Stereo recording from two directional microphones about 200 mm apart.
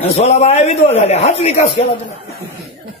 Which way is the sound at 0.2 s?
30° left (ahead or behind).